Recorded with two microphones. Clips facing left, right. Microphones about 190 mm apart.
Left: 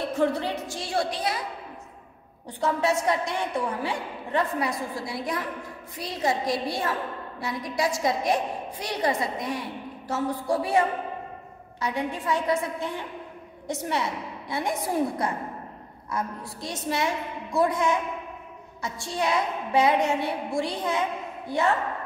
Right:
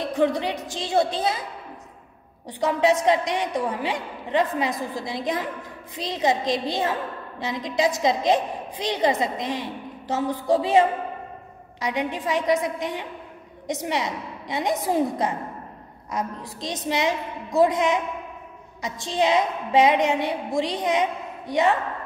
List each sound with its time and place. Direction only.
0.0 s a woman's voice: 15° right (ahead or behind)
2.6 s a woman's voice: 20° right (ahead or behind)